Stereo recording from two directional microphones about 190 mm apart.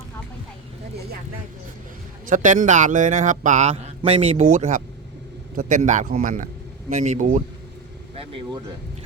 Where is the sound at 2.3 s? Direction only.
40° right (ahead or behind).